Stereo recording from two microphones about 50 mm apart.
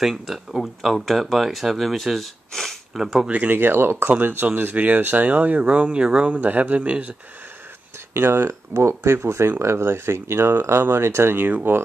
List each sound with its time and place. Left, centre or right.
0.0 s speech: centre
3.3 s speech: right
6.3 s speech: right
8.1 s speech: right
11.3 s speech: right